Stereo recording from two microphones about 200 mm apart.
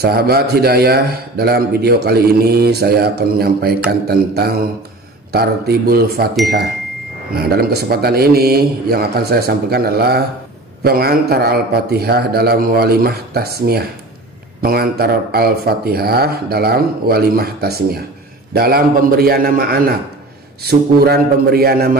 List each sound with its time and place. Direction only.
0.0 s a man's voice: 50° right (ahead or behind)
7.3 s a man's voice: 50° right (ahead or behind)